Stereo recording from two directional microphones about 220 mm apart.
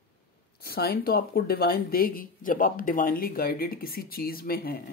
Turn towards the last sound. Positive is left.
turn(degrees=45)  # may be behind; listen again after turning